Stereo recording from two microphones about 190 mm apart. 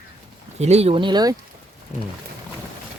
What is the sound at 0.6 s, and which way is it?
Speech, 35° right (ahead or behind).